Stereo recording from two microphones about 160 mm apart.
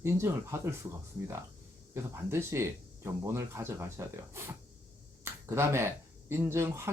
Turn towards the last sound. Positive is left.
turn(degrees=-15)  # may be behind; listen again after turning